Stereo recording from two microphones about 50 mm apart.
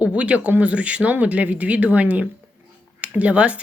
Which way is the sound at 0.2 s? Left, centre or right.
Right.